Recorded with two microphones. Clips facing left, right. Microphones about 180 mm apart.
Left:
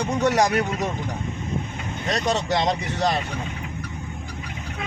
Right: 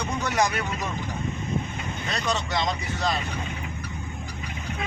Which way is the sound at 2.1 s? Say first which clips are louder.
Left 6 dB; 40° left (ahead or behind).